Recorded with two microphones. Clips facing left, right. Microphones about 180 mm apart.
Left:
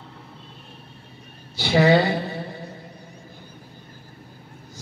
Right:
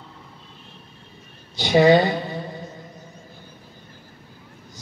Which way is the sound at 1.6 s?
20° right (ahead or behind).